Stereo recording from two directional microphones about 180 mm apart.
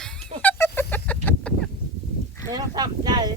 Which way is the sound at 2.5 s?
20° right (ahead or behind).